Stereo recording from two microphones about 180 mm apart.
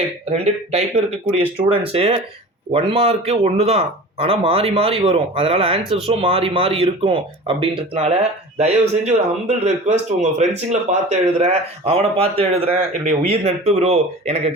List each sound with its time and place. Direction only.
0.3 s speech: 35° right (ahead or behind)